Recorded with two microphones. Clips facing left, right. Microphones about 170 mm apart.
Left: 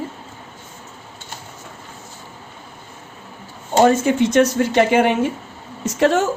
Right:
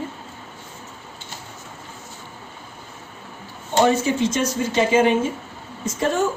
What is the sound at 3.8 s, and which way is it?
Speech, 60° left (ahead or behind).